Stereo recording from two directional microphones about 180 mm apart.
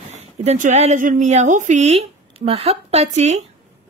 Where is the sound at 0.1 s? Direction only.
40° right (ahead or behind).